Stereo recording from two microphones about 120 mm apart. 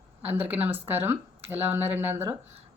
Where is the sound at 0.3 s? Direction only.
15° right (ahead or behind).